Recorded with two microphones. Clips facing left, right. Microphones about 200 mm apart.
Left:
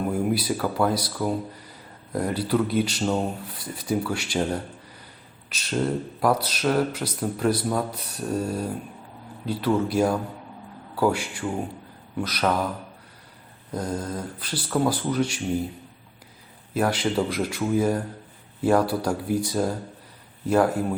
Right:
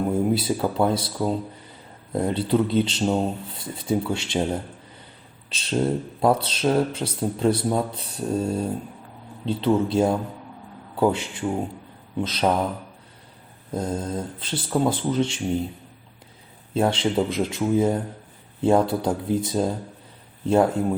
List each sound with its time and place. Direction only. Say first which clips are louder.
0.0 s speech: right 2 dB; 25° right (ahead or behind)
13.7 s speech: right 2 dB; 25° right (ahead or behind)
16.7 s speech: right 2 dB; 25° right (ahead or behind)